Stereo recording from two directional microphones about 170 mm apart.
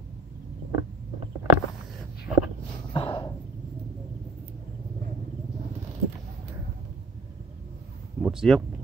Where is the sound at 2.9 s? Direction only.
30° left (ahead or behind).